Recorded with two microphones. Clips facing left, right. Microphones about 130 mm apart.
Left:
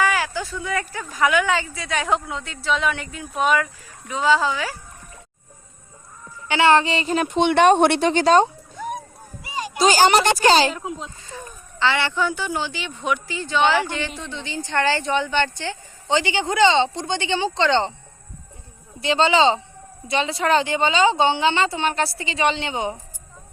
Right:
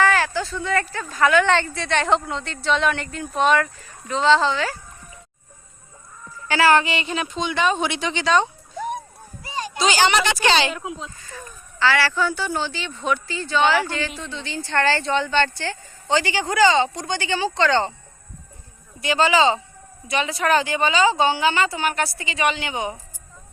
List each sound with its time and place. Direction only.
0.0 s speech: 10° left (ahead or behind)
6.5 s a woman's voice: 25° left (ahead or behind); by 7.3 s 45° left (ahead or behind)
7.3 s speech: 70° left (ahead or behind); by 8.4 s 45° left (ahead or behind)
9.8 s a woman's voice: 40° left (ahead or behind)
11.2 s a woman's voice: 20° left (ahead or behind)
18.9 s a woman's voice: 25° left (ahead or behind)